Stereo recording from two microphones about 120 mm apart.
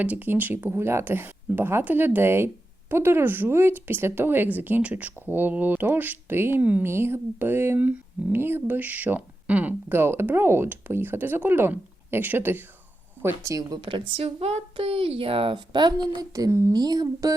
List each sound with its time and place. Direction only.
0.0 s speech: 15° right (ahead or behind); by 13.7 s 30° right (ahead or behind)
14.2 s a woman's voice: 50° right (ahead or behind); by 17.3 s 30° right (ahead or behind)